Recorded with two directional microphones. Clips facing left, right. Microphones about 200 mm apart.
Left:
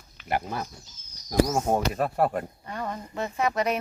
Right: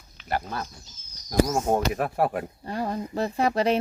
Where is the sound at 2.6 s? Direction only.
35° right (ahead or behind).